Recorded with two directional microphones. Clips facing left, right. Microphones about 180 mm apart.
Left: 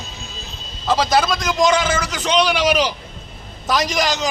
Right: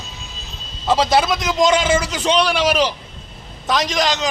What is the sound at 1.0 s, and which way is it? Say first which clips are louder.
Speech: right 1 dB; 25° right (ahead or behind).